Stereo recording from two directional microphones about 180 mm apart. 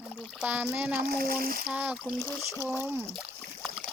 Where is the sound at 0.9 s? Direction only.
55° right (ahead or behind).